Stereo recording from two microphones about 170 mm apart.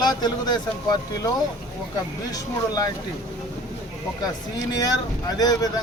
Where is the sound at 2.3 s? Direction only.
20° left (ahead or behind).